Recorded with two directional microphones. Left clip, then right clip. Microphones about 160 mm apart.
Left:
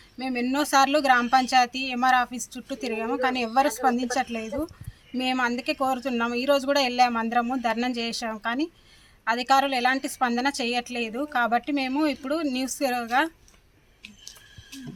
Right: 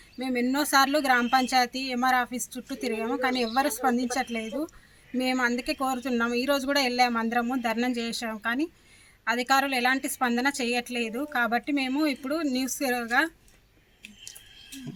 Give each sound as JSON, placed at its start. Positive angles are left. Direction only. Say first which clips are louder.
{"t": 0.2, "sound": "speech", "louder": "left 1 dB", "side_deg": -5}
{"t": 2.3, "sound": "speech", "louder": "right 1 dB", "side_deg": 30}
{"t": 2.6, "sound": "speech", "louder": "left 1 dB", "side_deg": -5}